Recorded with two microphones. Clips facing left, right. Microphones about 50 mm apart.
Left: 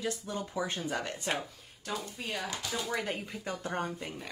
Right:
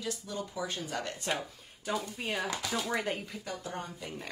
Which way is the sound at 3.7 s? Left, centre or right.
Left.